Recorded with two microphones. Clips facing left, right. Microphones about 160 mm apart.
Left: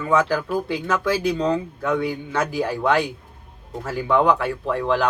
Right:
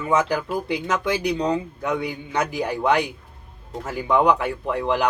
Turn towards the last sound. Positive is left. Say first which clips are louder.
# left 1 dB
turn(degrees=-15)  # may be behind; listen again after turning